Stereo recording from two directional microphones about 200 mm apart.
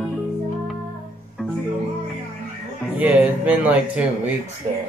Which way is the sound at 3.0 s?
5° right (ahead or behind).